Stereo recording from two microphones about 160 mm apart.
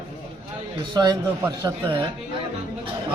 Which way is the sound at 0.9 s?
25° right (ahead or behind).